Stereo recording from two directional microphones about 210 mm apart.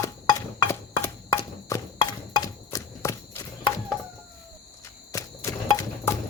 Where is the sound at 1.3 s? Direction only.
20° left (ahead or behind).